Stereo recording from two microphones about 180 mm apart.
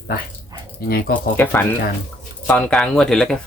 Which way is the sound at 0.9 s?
55° left (ahead or behind).